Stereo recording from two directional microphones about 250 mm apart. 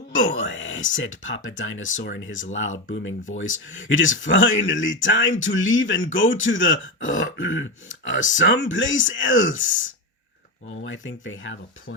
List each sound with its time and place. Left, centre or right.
0.1 s speech: left
10.8 s speech: left